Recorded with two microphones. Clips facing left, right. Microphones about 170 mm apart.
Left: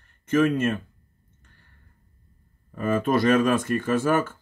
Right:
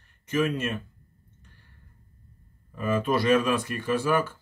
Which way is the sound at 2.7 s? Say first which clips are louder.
Left 3 dB; 45° left (ahead or behind).